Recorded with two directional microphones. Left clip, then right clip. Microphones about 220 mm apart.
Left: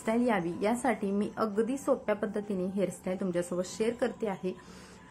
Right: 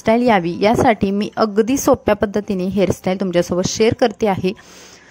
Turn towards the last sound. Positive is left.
turn(degrees=-45)  # may be behind; listen again after turning